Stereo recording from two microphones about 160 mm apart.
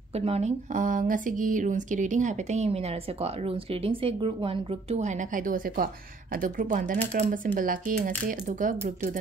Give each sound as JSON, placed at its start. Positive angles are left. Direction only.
{"t": 0.1, "sound": "speech", "side_deg": -40}